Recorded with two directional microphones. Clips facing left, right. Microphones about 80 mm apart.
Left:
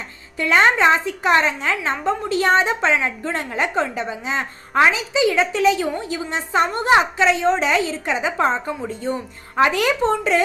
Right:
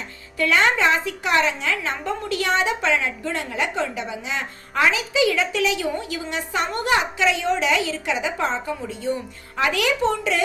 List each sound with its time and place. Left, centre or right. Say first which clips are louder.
0.3 s a woman's voice: left 3 dB; left